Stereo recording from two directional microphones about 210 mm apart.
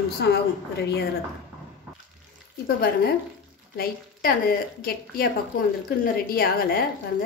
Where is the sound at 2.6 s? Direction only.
50° left (ahead or behind).